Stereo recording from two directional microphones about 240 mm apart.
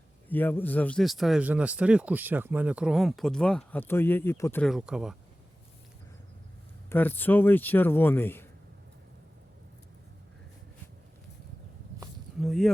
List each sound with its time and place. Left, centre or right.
0.3 s speech: centre
6.9 s a man's voice: centre
12.4 s speech: centre